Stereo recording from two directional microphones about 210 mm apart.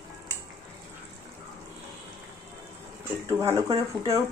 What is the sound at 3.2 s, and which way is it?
Speech, 10° right (ahead or behind).